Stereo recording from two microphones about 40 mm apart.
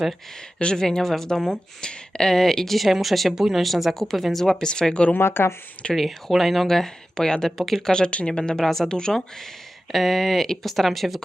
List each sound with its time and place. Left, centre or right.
0.6 s speech: centre
2.3 s speech: centre
5.1 s speech: left
5.9 s speech: centre
7.6 s speech: centre
7.9 s speech: left
8.6 s speech: centre
8.9 s speech: centre
9.9 s speech: centre